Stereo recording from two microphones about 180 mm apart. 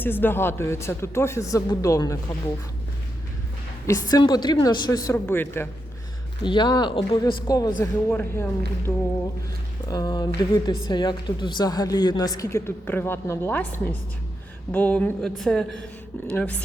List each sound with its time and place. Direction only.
0.0 s a man's voice: 10° left (ahead or behind)
3.8 s a man's voice: 15° left (ahead or behind)
5.0 s a man's voice: 10° left (ahead or behind)
6.4 s a woman's voice: 25° left (ahead or behind)
7.8 s a man's voice: 10° left (ahead or behind)
9.9 s a woman's voice: 20° left (ahead or behind)
14.7 s a man's voice: 10° left (ahead or behind)